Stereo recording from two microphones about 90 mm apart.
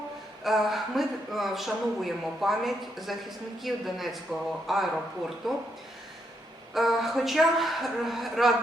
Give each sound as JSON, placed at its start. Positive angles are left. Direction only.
{"t": 0.4, "sound": "speech", "side_deg": 0}
{"t": 6.7, "sound": "speech", "side_deg": 0}